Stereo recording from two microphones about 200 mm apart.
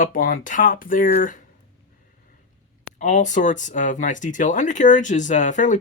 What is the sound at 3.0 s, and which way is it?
Speech, 40° left (ahead or behind).